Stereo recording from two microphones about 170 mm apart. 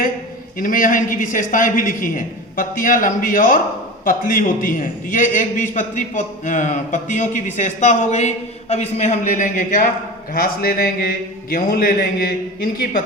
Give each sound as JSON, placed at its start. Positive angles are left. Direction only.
{"t": 0.6, "sound": "a man's voice", "side_deg": 55}
{"t": 10.3, "sound": "a man's voice", "side_deg": 60}